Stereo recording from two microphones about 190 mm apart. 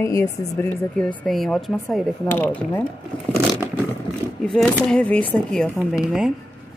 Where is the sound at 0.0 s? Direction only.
15° left (ahead or behind).